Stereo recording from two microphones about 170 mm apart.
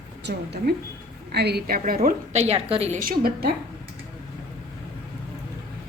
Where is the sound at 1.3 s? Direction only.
70° right (ahead or behind); by 3.0 s 35° right (ahead or behind).